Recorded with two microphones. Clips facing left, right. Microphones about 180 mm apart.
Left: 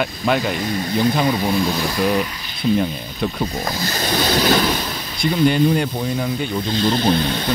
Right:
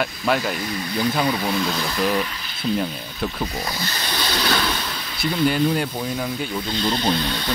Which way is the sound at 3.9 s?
45° left (ahead or behind).